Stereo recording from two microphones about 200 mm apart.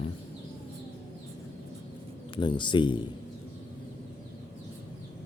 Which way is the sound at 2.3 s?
25° left (ahead or behind).